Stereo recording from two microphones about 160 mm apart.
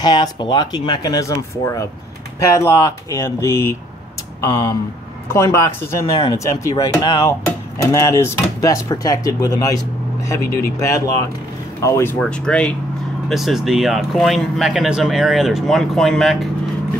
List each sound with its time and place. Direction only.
0.0 s speech: 25° left (ahead or behind)
11.8 s speech: 15° left (ahead or behind)
12.2 s speech: 5° left (ahead or behind)